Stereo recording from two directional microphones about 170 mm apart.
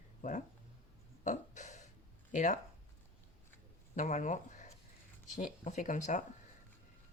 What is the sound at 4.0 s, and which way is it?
Speech, 45° left (ahead or behind).